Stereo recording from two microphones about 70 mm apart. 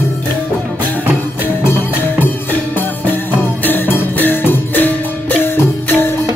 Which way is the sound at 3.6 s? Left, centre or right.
Left.